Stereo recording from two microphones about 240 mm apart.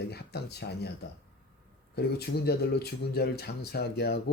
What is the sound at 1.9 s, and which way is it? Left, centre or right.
Speech, left.